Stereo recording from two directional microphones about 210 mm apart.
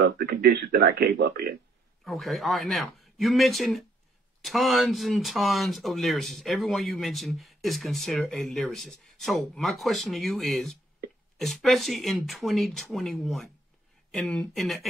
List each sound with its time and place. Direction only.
0.0 s a man's voice: 50° right (ahead or behind)
2.0 s speech: centre (ahead or behind)